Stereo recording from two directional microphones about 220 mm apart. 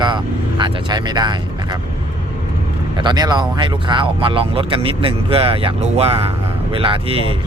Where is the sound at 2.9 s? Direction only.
20° right (ahead or behind).